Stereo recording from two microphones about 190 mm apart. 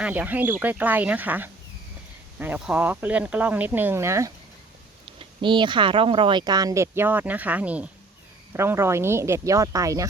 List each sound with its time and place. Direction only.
0.0 s speech: 10° right (ahead or behind)
5.0 s speech: 25° right (ahead or behind)